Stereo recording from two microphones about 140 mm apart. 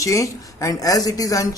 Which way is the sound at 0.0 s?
25° left (ahead or behind).